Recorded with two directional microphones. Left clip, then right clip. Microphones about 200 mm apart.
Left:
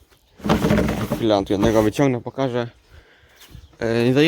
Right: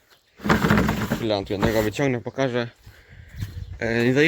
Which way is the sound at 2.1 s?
Centre (ahead or behind).